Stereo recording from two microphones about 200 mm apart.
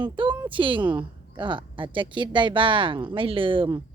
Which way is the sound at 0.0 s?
25° right (ahead or behind).